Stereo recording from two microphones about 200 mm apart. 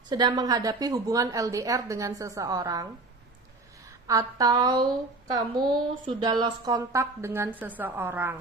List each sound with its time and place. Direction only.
0.1 s a woman's voice: 20° right (ahead or behind)
4.0 s a woman's voice: 15° right (ahead or behind)